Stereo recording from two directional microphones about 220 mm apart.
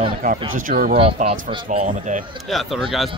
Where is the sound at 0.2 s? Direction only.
45° right (ahead or behind).